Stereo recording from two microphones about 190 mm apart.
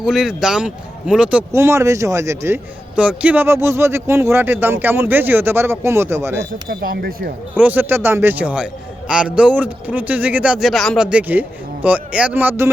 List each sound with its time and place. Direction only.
0.0 s a man's voice: centre (ahead or behind)
6.7 s speech: 55° right (ahead or behind)
7.5 s a man's voice: 10° right (ahead or behind)